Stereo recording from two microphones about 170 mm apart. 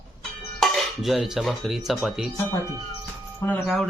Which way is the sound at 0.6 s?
Centre (ahead or behind).